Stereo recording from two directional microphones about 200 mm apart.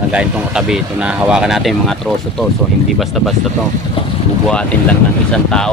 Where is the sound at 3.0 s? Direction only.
Centre (ahead or behind).